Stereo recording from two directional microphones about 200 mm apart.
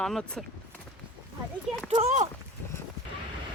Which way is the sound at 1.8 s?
30° right (ahead or behind).